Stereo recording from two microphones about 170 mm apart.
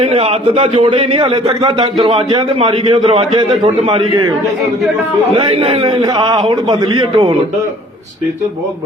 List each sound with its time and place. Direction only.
0.0 s a man's voice: 35° right (ahead or behind)
5.3 s a man's voice: 30° right (ahead or behind)
6.0 s a man's voice: 25° right (ahead or behind)